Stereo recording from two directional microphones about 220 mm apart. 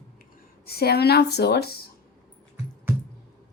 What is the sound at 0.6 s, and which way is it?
A woman's voice, 45° left (ahead or behind).